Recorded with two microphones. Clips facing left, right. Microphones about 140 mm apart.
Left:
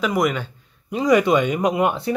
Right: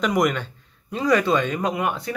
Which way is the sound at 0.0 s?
5° left (ahead or behind).